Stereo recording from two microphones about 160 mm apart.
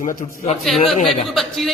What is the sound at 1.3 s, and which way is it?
Speech, centre (ahead or behind).